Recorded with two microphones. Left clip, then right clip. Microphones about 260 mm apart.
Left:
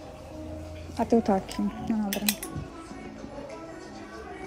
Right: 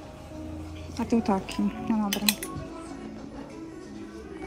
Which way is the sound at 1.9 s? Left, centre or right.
Right.